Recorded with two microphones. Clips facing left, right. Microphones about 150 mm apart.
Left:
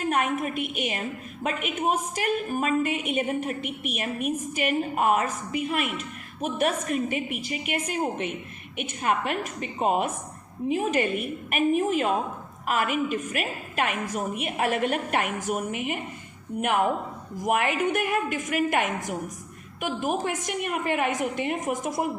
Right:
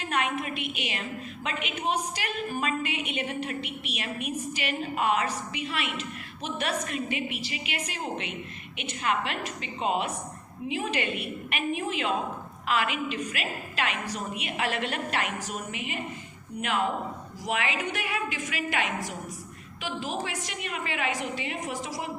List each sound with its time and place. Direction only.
0.0 s a woman's voice: 50° left (ahead or behind)